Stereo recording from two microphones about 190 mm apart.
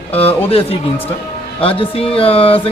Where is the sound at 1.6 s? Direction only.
30° left (ahead or behind).